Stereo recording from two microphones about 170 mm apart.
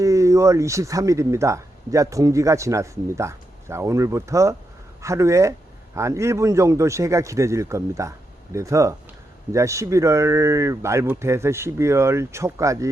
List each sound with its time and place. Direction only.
0.0 s speech: 20° right (ahead or behind)